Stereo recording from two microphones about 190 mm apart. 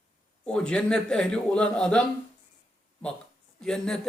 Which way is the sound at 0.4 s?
5° left (ahead or behind).